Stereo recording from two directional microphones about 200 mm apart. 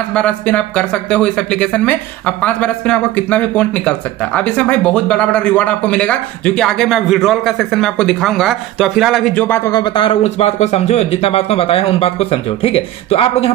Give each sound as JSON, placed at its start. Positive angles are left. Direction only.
{"t": 0.1, "sound": "speech", "side_deg": 5}
{"t": 9.7, "sound": "speech", "side_deg": 20}